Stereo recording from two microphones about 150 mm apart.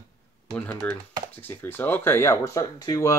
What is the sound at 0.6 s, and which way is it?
Speech, 10° left (ahead or behind).